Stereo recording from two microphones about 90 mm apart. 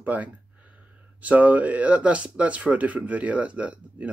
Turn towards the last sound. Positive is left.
turn(degrees=-15)  # may be behind; listen again after turning